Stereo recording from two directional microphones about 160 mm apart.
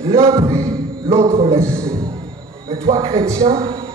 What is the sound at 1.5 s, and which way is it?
Speech, 20° right (ahead or behind).